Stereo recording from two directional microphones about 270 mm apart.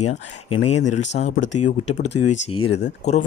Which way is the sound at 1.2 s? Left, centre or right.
Left.